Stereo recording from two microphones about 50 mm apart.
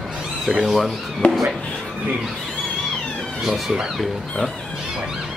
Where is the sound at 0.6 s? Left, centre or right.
Centre.